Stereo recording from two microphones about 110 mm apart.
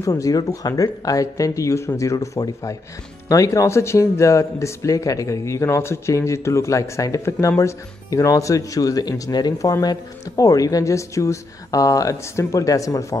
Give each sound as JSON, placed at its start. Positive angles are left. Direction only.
{"t": 0.0, "sound": "speech", "side_deg": 30}